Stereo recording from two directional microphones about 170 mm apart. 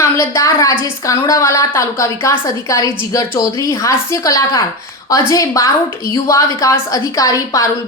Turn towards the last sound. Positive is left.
turn(degrees=20)  # may be behind; listen again after turning